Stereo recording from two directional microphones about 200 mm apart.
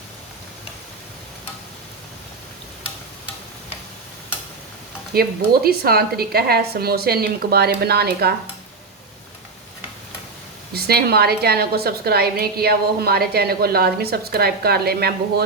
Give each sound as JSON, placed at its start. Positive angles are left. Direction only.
{"t": 5.1, "sound": "a woman's voice", "side_deg": -50}
{"t": 10.8, "sound": "a woman's voice", "side_deg": -50}